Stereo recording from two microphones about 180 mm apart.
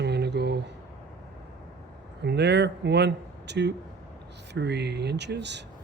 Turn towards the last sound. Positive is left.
turn(degrees=-70)  # may be behind; listen again after turning